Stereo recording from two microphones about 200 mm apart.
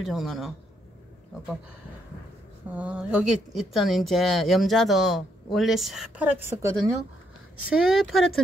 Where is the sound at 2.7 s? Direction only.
5° right (ahead or behind).